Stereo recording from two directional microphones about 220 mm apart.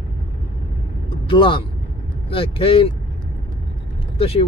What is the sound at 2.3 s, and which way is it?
Speech, 25° left (ahead or behind).